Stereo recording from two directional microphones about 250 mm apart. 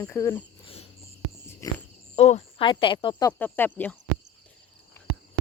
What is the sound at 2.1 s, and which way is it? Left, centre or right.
Speech, left.